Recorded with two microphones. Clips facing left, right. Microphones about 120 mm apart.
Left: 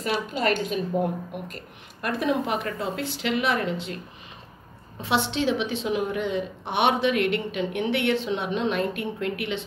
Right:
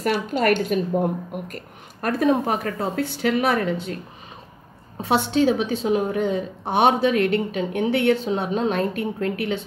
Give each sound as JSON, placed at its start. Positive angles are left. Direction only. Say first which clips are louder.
{"t": 0.0, "sound": "a woman's voice", "louder": "right 4 dB", "side_deg": -60}
{"t": 5.0, "sound": "a woman's voice", "louder": "right 5 dB", "side_deg": -45}